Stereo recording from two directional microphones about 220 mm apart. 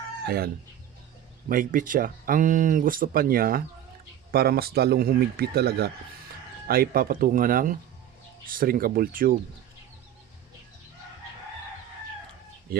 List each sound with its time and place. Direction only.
0.3 s speech: 45° right (ahead or behind)
12.7 s speech: 40° right (ahead or behind)